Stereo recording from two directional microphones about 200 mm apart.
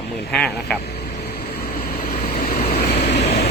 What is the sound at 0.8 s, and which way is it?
Vehicle, 55° left (ahead or behind).